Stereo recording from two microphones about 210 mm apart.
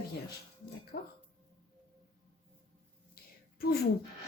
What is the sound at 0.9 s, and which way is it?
Speech, 45° left (ahead or behind).